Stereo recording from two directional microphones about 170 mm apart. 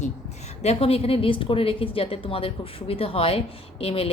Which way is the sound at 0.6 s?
35° left (ahead or behind).